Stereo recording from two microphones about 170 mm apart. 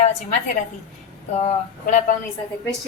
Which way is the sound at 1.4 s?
45° left (ahead or behind).